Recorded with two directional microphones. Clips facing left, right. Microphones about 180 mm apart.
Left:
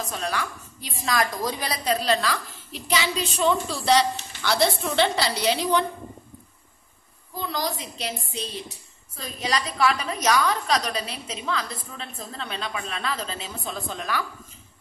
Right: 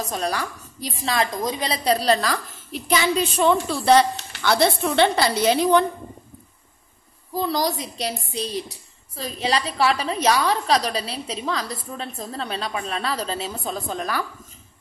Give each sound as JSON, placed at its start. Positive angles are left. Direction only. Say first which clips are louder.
{"t": 0.0, "sound": "a woman's voice", "louder": "right 3 dB", "side_deg": -40}
{"t": 1.9, "sound": "a woman's voice", "louder": "right 4 dB", "side_deg": -35}
{"t": 7.3, "sound": "a woman's voice", "louder": "right 6 dB", "side_deg": -40}
{"t": 9.1, "sound": "a woman's voice", "louder": "right 4 dB", "side_deg": -30}